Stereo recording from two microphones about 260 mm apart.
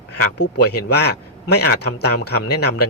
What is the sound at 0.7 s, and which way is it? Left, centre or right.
Speech, left.